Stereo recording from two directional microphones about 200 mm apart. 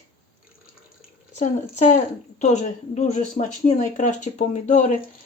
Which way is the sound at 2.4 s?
35° left (ahead or behind).